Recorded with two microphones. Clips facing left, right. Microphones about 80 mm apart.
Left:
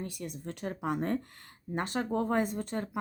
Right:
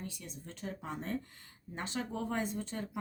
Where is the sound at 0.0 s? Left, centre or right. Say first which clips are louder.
Left 7 dB; left.